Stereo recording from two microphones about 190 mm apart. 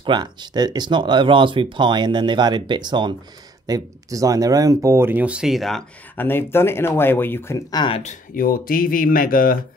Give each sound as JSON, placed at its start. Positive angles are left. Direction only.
{"t": 0.0, "sound": "speech", "side_deg": -25}
{"t": 8.0, "sound": "speech", "side_deg": 45}